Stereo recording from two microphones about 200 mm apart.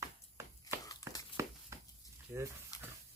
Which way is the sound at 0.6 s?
20° left (ahead or behind).